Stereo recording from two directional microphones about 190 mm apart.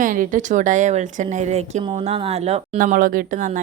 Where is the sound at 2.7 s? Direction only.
45° right (ahead or behind).